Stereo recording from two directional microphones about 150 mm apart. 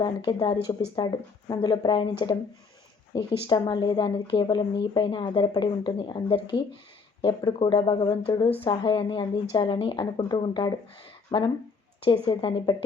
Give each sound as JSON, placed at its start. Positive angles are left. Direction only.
{"t": 0.0, "sound": "speech", "side_deg": 30}